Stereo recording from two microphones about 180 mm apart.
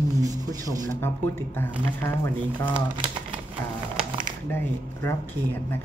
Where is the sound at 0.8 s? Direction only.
15° left (ahead or behind).